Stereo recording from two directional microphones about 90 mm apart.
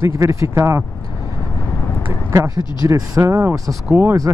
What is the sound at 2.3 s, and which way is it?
Speech, 40° right (ahead or behind).